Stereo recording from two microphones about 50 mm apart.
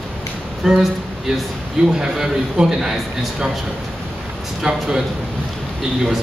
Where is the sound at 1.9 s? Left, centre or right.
Centre.